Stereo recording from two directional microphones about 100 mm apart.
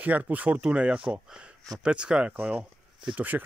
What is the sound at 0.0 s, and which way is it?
Speech, 15° right (ahead or behind).